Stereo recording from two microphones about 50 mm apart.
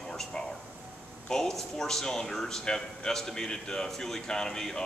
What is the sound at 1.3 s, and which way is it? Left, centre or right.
Speech, centre.